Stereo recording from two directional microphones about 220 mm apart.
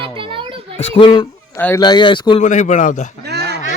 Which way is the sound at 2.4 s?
35° left (ahead or behind).